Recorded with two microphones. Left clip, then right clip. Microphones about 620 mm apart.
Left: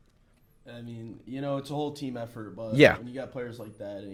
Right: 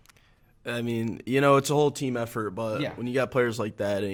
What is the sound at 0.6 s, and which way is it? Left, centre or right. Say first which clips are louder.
Speech: right 14 dB; right.